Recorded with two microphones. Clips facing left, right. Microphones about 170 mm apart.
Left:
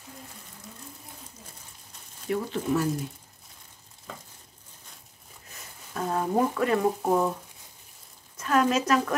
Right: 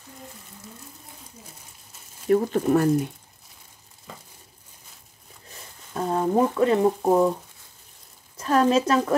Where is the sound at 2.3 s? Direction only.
50° right (ahead or behind).